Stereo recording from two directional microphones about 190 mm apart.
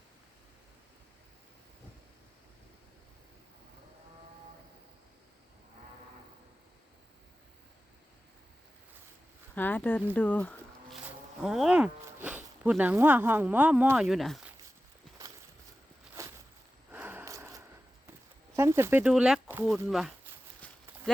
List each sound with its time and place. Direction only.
9.6 s speech: 10° left (ahead or behind)
10.2 s insect: 10° left (ahead or behind)
11.4 s speech: 5° right (ahead or behind)
16.2 s a sound: 15° right (ahead or behind)
18.5 s speech: 15° right (ahead or behind)
19.9 s walk: centre (ahead or behind)